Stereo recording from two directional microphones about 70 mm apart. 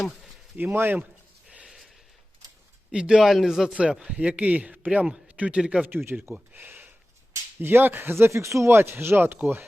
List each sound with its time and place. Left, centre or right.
0.5 s speech: right
1.5 s a sound: centre
2.9 s a man's voice: centre
3.8 s a man's voice: centre
6.1 s speech: right
6.3 s a sound: right
7.6 s speech: right